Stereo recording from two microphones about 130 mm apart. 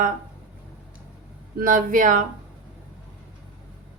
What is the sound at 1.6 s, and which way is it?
Speech, 90° right.